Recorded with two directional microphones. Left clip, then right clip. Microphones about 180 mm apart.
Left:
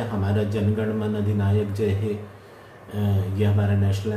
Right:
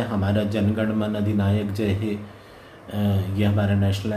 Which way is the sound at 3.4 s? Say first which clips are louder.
Right 2 dB; 65° right (ahead or behind).